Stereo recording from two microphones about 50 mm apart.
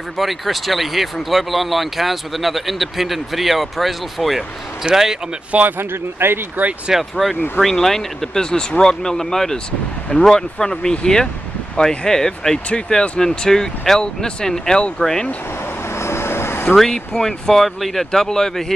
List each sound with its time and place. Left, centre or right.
0.2 s speech: centre
5.5 s speech: right
5.8 s speech: right
6.9 s speech: centre
7.6 s speech: centre
12.6 s speech: left
16.0 s vehicle: left
16.7 s speech: centre